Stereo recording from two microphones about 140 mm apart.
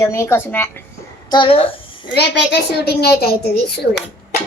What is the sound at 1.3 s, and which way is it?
Speech, 40° left (ahead or behind).